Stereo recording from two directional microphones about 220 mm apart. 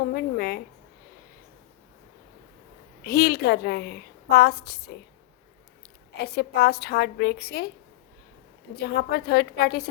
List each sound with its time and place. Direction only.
0.1 s a woman's voice: 40° left (ahead or behind)
3.0 s a woman's voice: 45° left (ahead or behind)
6.2 s a woman's voice: 45° left (ahead or behind)
8.7 s a woman's voice: 45° left (ahead or behind)